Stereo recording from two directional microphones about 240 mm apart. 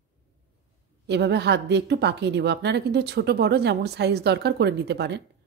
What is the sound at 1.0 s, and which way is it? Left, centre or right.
Speech, right.